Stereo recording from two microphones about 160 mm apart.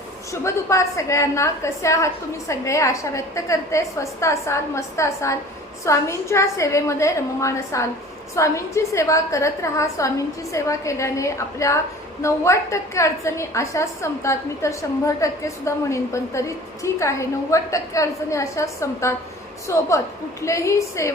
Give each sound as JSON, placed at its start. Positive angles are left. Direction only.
{"t": 0.4, "sound": "a woman's voice", "side_deg": 20}